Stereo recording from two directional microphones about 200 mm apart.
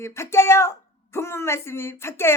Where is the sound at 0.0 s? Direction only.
15° left (ahead or behind).